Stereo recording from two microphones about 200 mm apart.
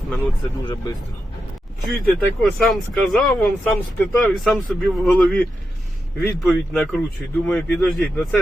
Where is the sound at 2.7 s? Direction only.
Centre (ahead or behind).